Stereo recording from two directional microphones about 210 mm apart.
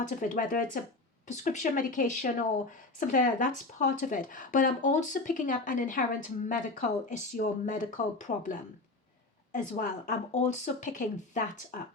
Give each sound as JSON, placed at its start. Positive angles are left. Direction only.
{"t": 0.2, "sound": "speech", "side_deg": 40}